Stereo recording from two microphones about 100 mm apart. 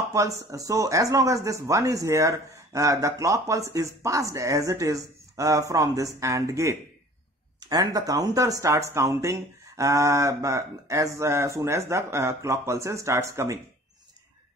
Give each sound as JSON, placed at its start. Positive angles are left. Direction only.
{"t": 0.1, "sound": "speech", "side_deg": -35}